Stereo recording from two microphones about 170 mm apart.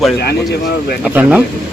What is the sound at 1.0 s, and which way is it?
Speech, 10° right (ahead or behind).